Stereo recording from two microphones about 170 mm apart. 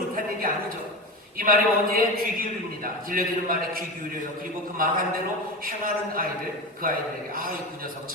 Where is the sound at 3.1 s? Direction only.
55° right (ahead or behind).